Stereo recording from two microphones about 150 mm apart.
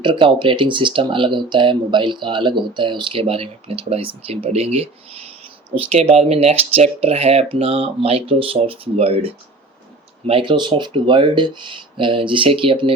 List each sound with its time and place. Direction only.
0.0 s speech: 35° right (ahead or behind)